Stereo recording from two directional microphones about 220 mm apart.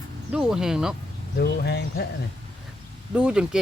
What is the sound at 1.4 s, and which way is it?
Speech, 45° left (ahead or behind).